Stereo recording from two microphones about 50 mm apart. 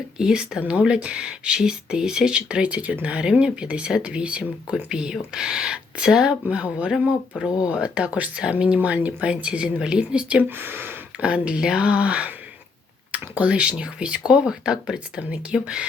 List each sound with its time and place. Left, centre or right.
0.2 s speech: centre
4.7 s speech: centre
10.6 s speech: right
11.2 s speech: right